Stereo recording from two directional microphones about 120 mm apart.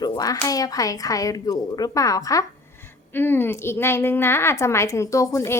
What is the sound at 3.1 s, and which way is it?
A woman's voice, 15° left (ahead or behind).